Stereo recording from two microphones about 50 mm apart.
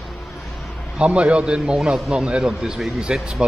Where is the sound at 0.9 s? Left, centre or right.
Right.